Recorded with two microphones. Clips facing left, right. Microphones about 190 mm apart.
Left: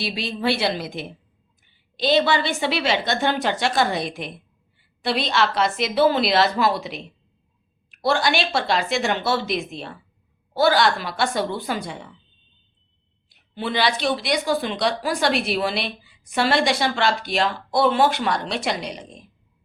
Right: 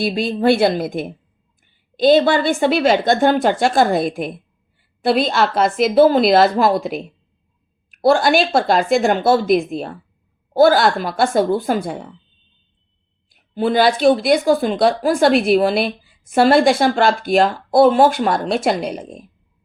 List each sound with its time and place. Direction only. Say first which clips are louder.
0.0 s a woman's voice: right 8 dB; 50° right (ahead or behind)
13.3 s a woman's voice: right 9 dB; 45° right (ahead or behind)